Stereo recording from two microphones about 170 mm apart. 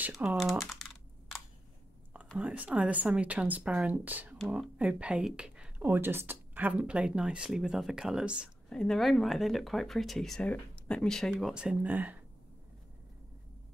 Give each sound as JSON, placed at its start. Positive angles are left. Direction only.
{"t": 0.0, "sound": "computer keyboard", "side_deg": -5}
{"t": 2.3, "sound": "speech", "side_deg": -10}